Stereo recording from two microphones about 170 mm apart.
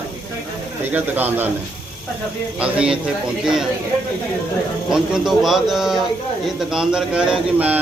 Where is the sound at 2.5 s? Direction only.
5° right (ahead or behind).